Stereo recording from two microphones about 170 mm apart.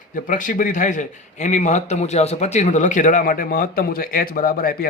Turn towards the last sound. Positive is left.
turn(degrees=60)  # may be behind; listen again after turning